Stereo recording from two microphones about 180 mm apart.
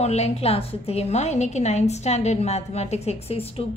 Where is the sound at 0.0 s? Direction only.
35° left (ahead or behind).